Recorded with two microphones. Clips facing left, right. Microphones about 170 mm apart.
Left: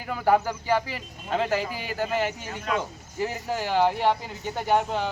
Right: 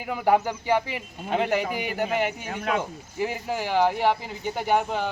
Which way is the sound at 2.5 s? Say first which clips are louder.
Right 3 dB; 55° right (ahead or behind).